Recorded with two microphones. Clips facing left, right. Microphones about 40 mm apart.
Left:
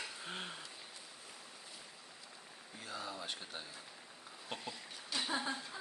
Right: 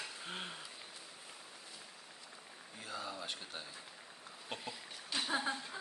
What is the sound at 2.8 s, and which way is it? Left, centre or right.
Speech, centre.